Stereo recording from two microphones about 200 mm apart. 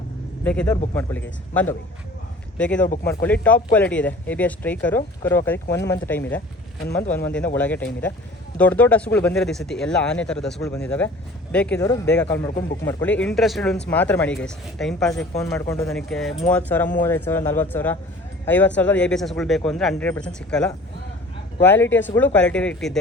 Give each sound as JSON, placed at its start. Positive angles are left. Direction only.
{"t": 0.4, "sound": "speech", "side_deg": 5}
{"t": 2.8, "sound": "speech", "side_deg": 40}
{"t": 3.2, "sound": "speech", "side_deg": 10}
{"t": 15.4, "sound": "speech", "side_deg": 15}
{"t": 15.9, "sound": "speech", "side_deg": 0}